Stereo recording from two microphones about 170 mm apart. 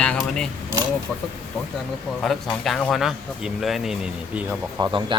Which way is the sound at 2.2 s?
Centre (ahead or behind).